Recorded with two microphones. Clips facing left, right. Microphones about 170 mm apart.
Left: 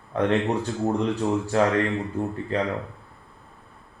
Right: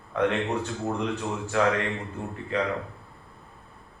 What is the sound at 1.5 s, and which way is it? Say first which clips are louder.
Speech: left 1 dB; 35° left (ahead or behind).